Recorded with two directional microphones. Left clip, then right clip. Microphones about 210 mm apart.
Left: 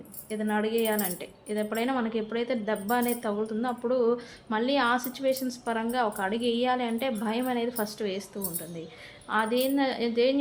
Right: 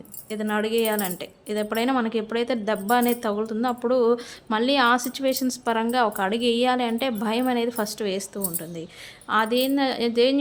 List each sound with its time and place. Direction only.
0.3 s speech: 35° right (ahead or behind)